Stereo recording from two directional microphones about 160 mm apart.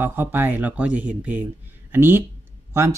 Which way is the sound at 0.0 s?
15° right (ahead or behind).